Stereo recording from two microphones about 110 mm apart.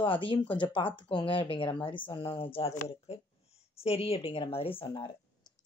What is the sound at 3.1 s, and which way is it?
Speech, 75° left (ahead or behind).